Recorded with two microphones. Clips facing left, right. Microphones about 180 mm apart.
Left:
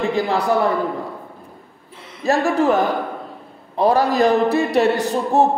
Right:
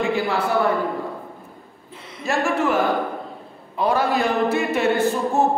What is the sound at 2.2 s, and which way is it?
A man's voice, 35° left (ahead or behind).